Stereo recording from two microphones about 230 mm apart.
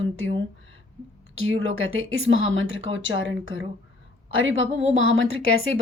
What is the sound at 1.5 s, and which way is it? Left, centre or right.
A woman's voice, right.